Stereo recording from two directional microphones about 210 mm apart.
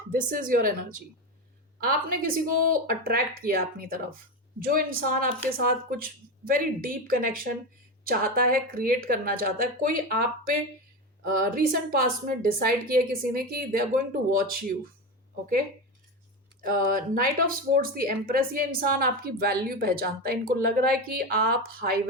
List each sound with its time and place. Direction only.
0.1 s a woman's voice: 40° right (ahead or behind)
16.6 s speech: 40° right (ahead or behind)